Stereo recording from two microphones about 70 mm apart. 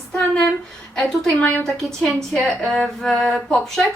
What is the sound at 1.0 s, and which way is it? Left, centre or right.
Speech, left.